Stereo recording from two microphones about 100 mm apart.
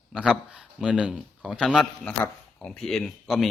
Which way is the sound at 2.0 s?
10° left (ahead or behind).